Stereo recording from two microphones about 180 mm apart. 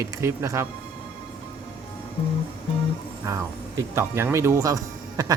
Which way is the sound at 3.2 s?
15° right (ahead or behind).